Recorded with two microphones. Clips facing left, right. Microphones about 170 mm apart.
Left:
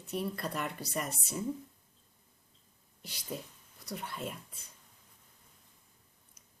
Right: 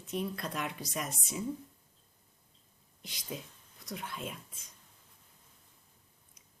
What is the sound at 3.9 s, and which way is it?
Speech, 5° left (ahead or behind).